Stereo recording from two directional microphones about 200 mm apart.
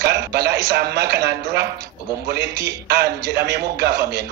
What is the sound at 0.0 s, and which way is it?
A man's voice, 55° right (ahead or behind).